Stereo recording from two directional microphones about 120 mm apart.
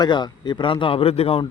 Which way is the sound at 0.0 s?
40° left (ahead or behind).